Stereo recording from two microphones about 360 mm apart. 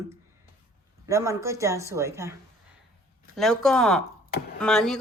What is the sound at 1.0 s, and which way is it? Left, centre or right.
A woman's voice, centre.